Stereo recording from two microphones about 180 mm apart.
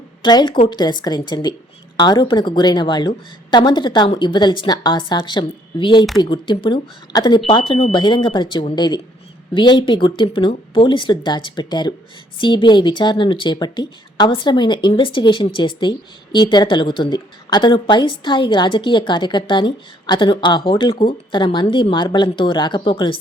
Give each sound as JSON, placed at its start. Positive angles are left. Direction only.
{"t": 0.2, "sound": "a woman's voice", "side_deg": 25}